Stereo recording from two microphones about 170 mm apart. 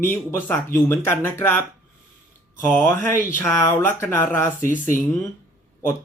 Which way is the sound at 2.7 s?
15° left (ahead or behind).